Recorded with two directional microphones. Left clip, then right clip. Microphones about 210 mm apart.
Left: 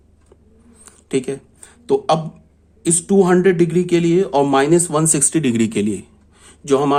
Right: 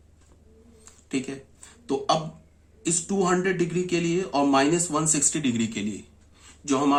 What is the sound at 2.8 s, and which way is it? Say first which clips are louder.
Speech: left 10 dB; 40° left (ahead or behind).